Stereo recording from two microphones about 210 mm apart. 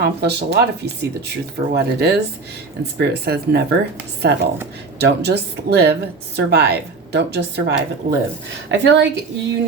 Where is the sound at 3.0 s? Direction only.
50° right (ahead or behind).